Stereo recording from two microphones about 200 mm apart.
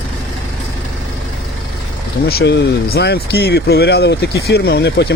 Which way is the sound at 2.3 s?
55° left (ahead or behind).